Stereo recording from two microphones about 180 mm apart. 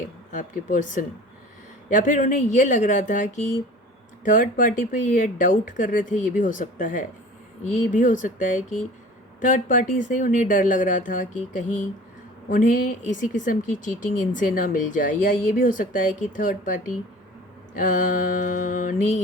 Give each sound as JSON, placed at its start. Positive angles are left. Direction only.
{"t": 0.3, "sound": "speech", "side_deg": 45}
{"t": 17.7, "sound": "speech", "side_deg": 45}